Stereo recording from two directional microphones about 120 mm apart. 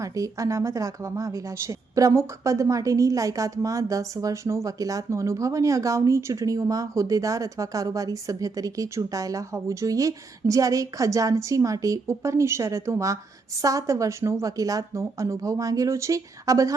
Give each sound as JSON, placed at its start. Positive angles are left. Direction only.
{"t": 0.0, "sound": "a woman's voice", "side_deg": -30}